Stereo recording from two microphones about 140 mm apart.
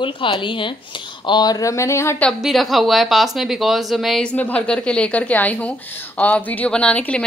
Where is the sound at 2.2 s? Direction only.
Centre (ahead or behind).